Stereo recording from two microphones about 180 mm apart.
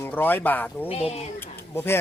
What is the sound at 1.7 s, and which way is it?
Speech, 10° left (ahead or behind).